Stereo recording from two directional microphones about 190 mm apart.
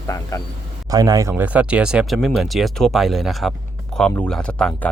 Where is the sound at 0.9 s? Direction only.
20° right (ahead or behind).